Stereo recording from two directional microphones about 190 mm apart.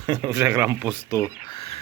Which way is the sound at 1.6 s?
35° left (ahead or behind).